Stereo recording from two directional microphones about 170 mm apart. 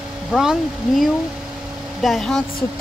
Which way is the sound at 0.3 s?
Centre (ahead or behind).